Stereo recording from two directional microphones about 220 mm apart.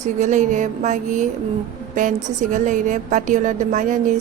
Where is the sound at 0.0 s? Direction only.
35° right (ahead or behind).